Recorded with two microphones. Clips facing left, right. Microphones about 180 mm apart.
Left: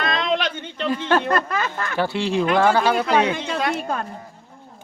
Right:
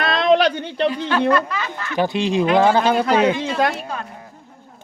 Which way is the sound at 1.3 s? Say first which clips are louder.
Right 2 dB; 50° left (ahead or behind).